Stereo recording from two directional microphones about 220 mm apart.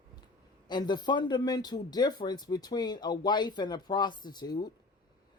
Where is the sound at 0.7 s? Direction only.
20° left (ahead or behind).